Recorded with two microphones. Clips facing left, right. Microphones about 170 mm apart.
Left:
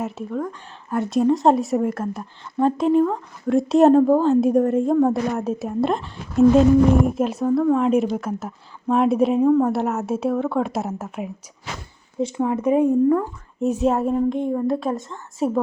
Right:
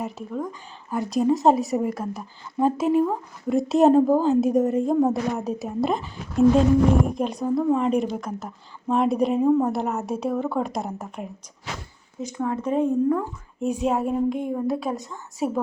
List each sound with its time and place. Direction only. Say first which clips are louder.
0.0 s speech: left 3 dB; centre (ahead or behind)
12.4 s a woman's voice: left 4 dB; 15° left (ahead or behind)
13.1 s speech: left 4 dB; centre (ahead or behind)